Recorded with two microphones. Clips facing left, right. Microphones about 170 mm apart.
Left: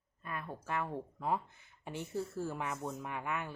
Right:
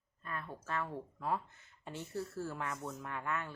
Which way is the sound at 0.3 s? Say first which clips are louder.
Left 2 dB; 15° left (ahead or behind).